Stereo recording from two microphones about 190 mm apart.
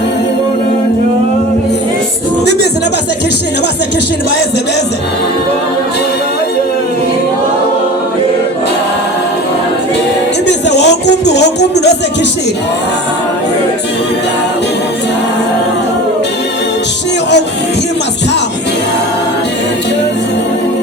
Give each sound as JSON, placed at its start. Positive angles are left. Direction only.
{"t": 10.4, "sound": "music", "side_deg": 65}